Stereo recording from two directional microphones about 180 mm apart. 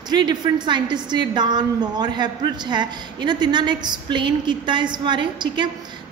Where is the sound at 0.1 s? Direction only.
25° right (ahead or behind).